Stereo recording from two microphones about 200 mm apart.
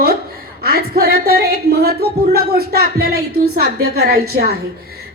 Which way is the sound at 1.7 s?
50° right (ahead or behind).